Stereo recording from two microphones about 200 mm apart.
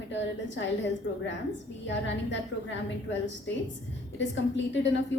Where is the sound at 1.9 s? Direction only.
65° left (ahead or behind).